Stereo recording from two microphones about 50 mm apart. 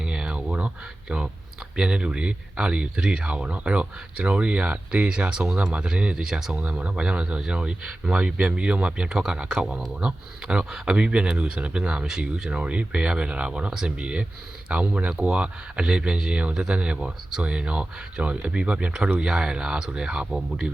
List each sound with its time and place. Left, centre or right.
0.0 s a sound: centre
1.7 s speech: centre
6.6 s speech: right